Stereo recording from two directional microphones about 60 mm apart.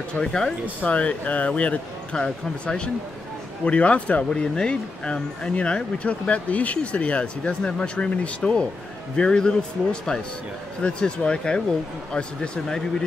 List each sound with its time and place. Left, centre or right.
0.1 s speech: centre
0.7 s speech: left
10.8 s speech: centre